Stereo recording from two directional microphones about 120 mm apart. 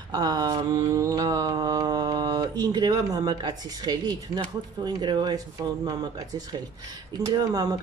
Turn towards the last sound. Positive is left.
turn(degrees=-30)  # may be behind; listen again after turning